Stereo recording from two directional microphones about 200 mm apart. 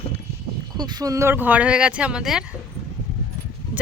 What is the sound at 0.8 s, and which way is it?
Speech, 20° right (ahead or behind).